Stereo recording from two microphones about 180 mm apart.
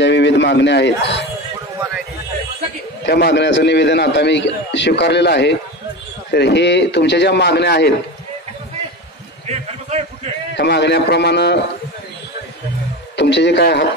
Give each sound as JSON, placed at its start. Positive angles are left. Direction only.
{"t": 0.0, "sound": "a man's voice", "side_deg": 75}
{"t": 3.1, "sound": "a man's voice", "side_deg": 65}
{"t": 9.5, "sound": "a sound", "side_deg": -35}
{"t": 10.5, "sound": "a man's voice", "side_deg": 70}
{"t": 13.1, "sound": "a man's voice", "side_deg": 75}